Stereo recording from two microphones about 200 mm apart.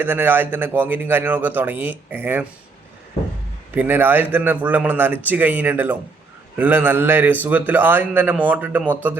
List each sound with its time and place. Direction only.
0.0 s a man's voice: 10° right (ahead or behind)
3.8 s a man's voice: 10° right (ahead or behind)